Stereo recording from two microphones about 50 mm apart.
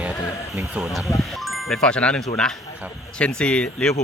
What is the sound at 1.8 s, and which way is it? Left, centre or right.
Speech, centre.